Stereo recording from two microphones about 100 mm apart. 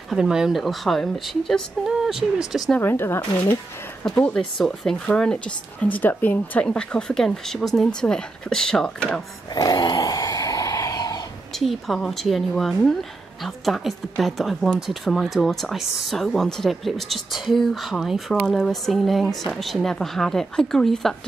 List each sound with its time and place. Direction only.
0.1 s speech: 5° right (ahead or behind)
2.8 s speech: 25° left (ahead or behind)
4.2 s speech: 5° left (ahead or behind)
9.5 s a sound: 40° left (ahead or behind)
11.5 s speech: centre (ahead or behind)